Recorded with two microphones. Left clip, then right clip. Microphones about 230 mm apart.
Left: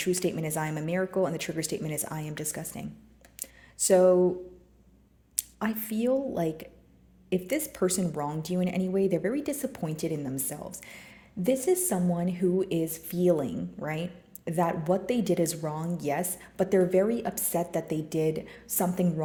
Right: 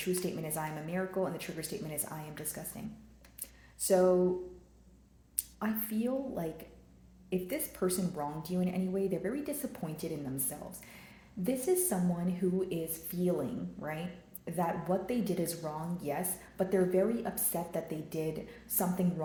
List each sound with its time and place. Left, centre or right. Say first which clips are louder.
0.0 s a woman's voice: left 7 dB; left
5.4 s a woman's voice: left 5 dB; left